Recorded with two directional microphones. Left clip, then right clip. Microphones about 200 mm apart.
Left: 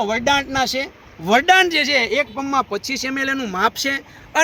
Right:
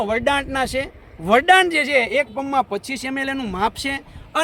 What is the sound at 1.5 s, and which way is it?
Speech, 60° right (ahead or behind).